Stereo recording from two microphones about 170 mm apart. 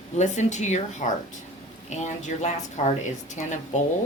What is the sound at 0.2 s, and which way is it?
A woman's voice, 45° left (ahead or behind).